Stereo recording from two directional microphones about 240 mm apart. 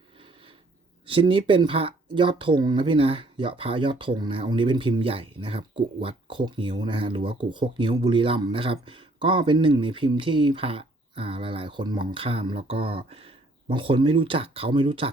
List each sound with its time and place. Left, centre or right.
1.0 s speech: right